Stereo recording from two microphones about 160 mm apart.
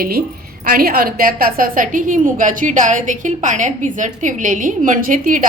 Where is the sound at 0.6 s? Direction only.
65° right (ahead or behind).